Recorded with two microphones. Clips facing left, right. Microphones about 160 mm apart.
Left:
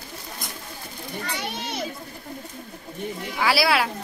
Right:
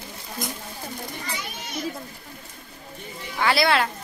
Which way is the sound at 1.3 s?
70° left (ahead or behind).